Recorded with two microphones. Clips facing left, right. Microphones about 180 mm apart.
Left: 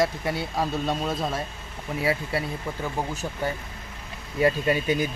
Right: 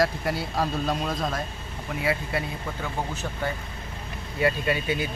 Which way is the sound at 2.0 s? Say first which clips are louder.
Left 1 dB; 35° left (ahead or behind).